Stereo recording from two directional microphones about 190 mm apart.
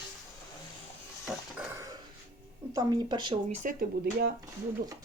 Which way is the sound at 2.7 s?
20° right (ahead or behind).